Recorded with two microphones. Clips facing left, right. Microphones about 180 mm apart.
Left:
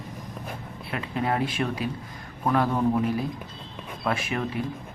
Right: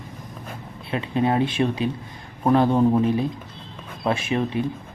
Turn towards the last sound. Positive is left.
turn(degrees=-25)  # may be behind; listen again after turning